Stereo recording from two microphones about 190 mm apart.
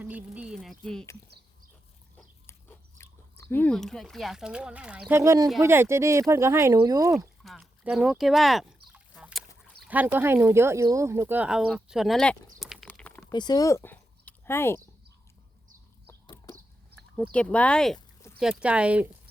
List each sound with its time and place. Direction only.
0.0 s speech: 10° right (ahead or behind)
2.5 s speech: 15° left (ahead or behind); by 7.3 s 15° right (ahead or behind)
7.4 s a sound: centre (ahead or behind)
9.8 s speech: 10° right (ahead or behind); by 13.2 s 5° left (ahead or behind)
13.3 s speech: 20° left (ahead or behind)
16.2 s chicken: 20° left (ahead or behind)
17.3 s speech: 5° left (ahead or behind)